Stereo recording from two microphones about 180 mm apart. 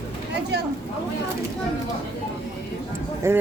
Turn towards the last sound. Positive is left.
turn(degrees=-15)  # may be behind; listen again after turning